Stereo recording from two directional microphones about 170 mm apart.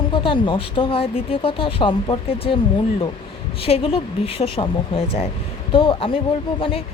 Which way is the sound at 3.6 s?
35° left (ahead or behind).